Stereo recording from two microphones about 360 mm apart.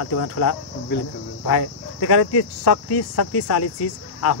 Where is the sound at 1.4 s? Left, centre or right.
Left.